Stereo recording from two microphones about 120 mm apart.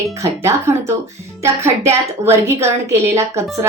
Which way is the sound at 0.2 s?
20° right (ahead or behind).